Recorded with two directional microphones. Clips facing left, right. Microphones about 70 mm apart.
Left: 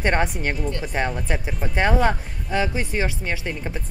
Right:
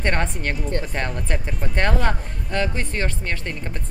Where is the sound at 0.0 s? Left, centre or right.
Centre.